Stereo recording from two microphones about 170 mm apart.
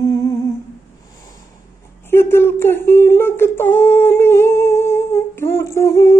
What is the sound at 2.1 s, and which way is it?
Humming, 15° left (ahead or behind).